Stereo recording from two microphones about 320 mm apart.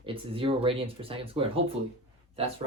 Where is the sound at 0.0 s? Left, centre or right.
Centre.